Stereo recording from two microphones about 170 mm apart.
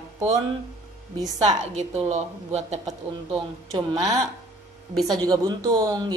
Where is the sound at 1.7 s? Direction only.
40° right (ahead or behind).